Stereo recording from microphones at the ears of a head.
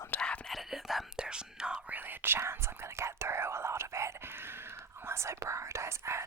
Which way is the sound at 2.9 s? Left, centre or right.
Right.